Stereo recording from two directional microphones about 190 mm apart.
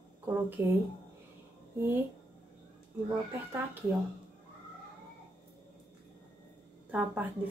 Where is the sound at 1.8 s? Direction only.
10° right (ahead or behind).